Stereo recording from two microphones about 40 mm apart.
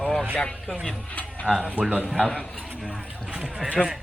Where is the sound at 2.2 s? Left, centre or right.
Left.